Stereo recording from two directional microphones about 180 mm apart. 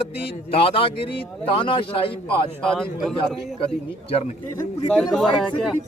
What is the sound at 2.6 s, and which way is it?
Speech, centre (ahead or behind).